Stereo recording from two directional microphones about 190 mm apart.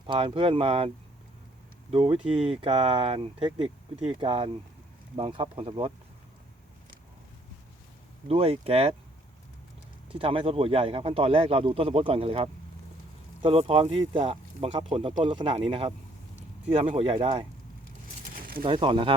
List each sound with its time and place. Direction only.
0.1 s speech: 25° right (ahead or behind)
1.9 s speech: 30° right (ahead or behind)
8.3 s speech: 30° right (ahead or behind)
10.1 s speech: 30° right (ahead or behind)
16.8 s speech: 30° right (ahead or behind)
18.6 s speech: 25° right (ahead or behind)